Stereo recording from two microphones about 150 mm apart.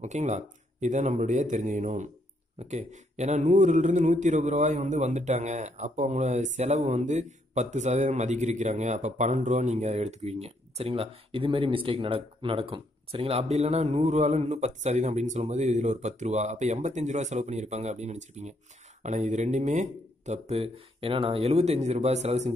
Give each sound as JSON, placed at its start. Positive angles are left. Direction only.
{"t": 0.0, "sound": "a man's voice", "side_deg": -50}